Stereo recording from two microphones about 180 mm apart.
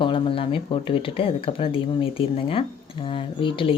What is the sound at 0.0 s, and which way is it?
Speech, 30° left (ahead or behind).